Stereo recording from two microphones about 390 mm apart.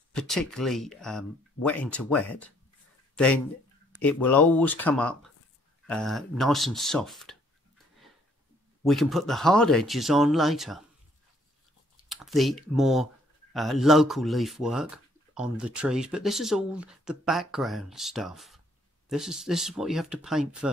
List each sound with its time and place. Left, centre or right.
0.1 s speech: centre
4.0 s speech: centre
8.8 s speech: centre
12.1 s a sound: centre
12.7 s speech: centre